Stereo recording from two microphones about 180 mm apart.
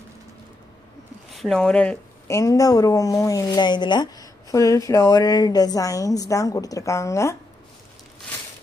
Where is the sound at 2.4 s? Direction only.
20° left (ahead or behind).